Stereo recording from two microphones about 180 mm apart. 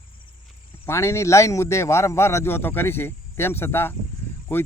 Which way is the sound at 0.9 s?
15° left (ahead or behind).